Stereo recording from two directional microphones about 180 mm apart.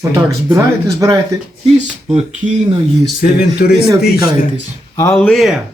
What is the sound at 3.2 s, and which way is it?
Speech, 60° left (ahead or behind).